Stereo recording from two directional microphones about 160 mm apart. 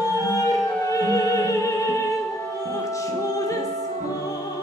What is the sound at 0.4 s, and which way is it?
Music, 20° left (ahead or behind).